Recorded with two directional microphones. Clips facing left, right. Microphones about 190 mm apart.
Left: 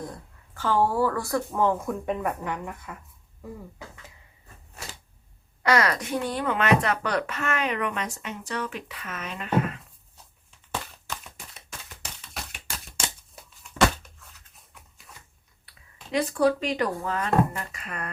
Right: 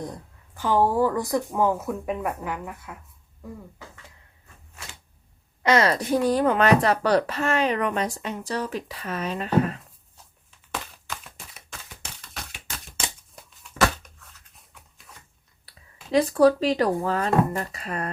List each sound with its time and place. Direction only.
0.5 s speech: 15° right (ahead or behind); by 3.6 s centre (ahead or behind)
5.6 s speech: 25° right (ahead or behind)
12.3 s typewriter: centre (ahead or behind)
14.7 s a sound: centre (ahead or behind)
16.1 s speech: 35° right (ahead or behind)